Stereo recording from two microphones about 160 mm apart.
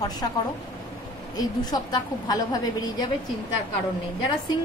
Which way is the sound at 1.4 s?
25° left (ahead or behind).